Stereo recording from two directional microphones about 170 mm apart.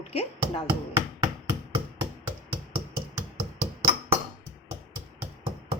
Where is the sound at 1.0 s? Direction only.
20° right (ahead or behind).